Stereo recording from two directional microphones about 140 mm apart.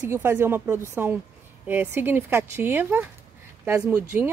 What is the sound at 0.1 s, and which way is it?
Speech, 15° right (ahead or behind).